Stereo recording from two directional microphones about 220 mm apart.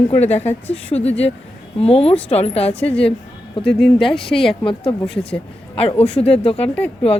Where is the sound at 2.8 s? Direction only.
5° left (ahead or behind).